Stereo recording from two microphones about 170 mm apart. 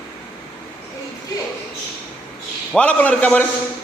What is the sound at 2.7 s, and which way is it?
Speech, 10° left (ahead or behind).